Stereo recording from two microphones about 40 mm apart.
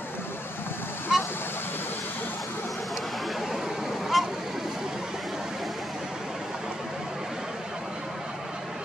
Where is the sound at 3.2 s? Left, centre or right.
Centre.